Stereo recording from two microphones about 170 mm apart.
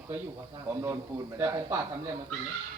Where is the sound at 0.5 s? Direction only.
20° right (ahead or behind).